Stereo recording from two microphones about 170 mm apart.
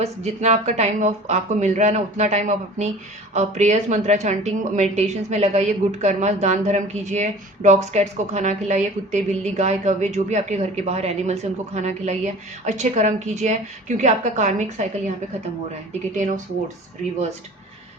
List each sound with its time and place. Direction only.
0.0 s a woman's voice: 40° right (ahead or behind)
16.1 s speech: 45° right (ahead or behind)